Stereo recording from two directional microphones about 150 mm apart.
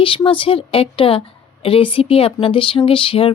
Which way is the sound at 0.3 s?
35° left (ahead or behind).